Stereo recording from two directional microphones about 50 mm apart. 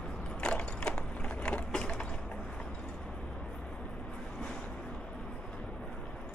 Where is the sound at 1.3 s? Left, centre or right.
Left.